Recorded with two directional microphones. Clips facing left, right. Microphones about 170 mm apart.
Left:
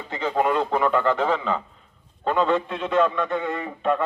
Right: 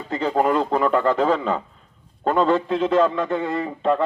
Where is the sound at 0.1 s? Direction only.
40° right (ahead or behind).